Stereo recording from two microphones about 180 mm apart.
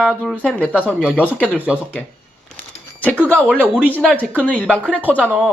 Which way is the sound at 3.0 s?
10° left (ahead or behind).